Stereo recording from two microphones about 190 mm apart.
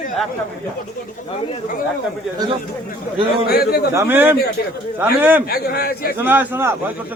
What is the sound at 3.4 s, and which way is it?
Speech, 55° left (ahead or behind).